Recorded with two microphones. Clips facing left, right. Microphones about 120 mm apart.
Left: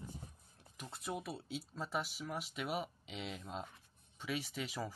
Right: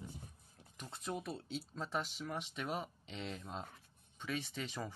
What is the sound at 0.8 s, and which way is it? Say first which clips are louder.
Speech: even; 5° left (ahead or behind).